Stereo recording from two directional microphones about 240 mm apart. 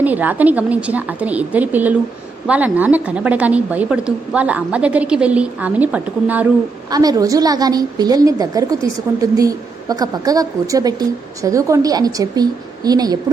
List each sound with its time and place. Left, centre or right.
0.0 s a woman's voice: centre